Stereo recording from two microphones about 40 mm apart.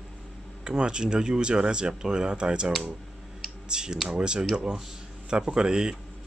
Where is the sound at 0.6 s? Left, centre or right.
Right.